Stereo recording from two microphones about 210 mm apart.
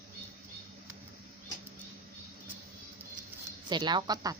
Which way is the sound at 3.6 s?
20° right (ahead or behind).